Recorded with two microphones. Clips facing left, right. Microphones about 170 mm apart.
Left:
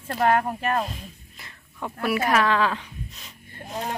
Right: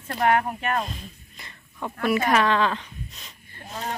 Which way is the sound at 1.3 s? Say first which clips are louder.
Right 1 dB; centre (ahead or behind).